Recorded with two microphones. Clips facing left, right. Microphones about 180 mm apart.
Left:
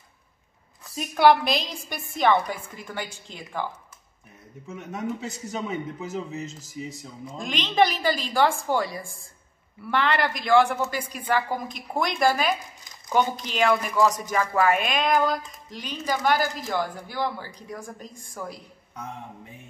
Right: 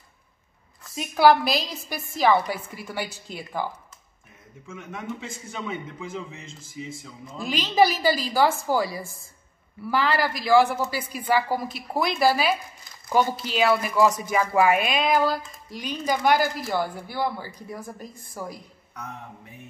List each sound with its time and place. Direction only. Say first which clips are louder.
0.9 s a woman's voice: right 1 dB; centre (ahead or behind)
4.6 s a man's voice: left 3 dB; 40° left (ahead or behind)
7.3 s a woman's voice: right 2 dB; 5° right (ahead or behind)